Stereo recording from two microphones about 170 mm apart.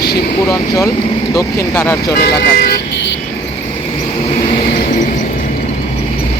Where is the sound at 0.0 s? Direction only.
70° left (ahead or behind).